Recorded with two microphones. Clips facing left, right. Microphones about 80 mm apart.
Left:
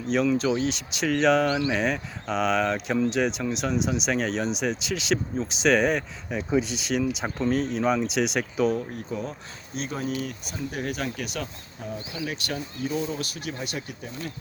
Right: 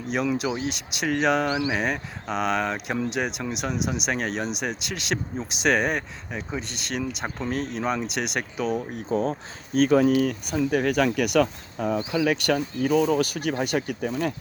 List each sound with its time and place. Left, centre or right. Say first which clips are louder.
0.1 s speech: left 3 dB; centre
10.5 s speech: right 9 dB; right
12.2 s speech: right 7 dB; right
13.3 s speech: right 8 dB; right